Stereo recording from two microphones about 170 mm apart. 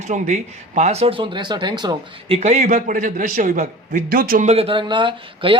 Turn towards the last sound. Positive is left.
turn(degrees=-30)  # may be behind; listen again after turning